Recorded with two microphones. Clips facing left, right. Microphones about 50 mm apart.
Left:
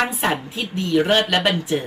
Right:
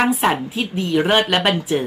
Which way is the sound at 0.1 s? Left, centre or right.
Centre.